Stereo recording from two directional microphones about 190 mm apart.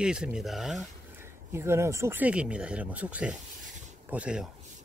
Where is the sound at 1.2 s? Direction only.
15° right (ahead or behind).